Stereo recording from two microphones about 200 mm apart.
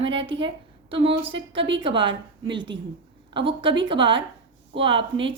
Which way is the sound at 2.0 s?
25° right (ahead or behind).